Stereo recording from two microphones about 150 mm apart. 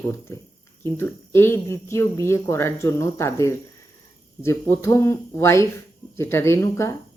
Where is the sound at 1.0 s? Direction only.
15° left (ahead or behind).